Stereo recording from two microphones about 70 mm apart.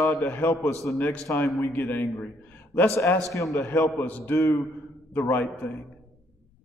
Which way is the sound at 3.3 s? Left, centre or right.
Left.